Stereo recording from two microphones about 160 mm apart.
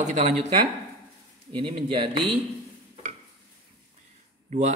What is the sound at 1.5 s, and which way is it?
Speech, 30° right (ahead or behind).